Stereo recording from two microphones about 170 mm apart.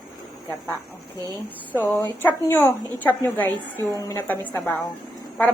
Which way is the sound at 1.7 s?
10° left (ahead or behind).